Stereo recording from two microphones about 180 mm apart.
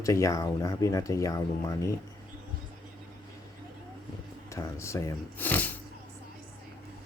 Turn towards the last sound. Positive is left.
turn(degrees=10)  # may be behind; listen again after turning